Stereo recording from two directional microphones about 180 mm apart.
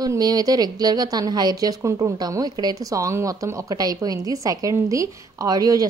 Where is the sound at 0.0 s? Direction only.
20° right (ahead or behind).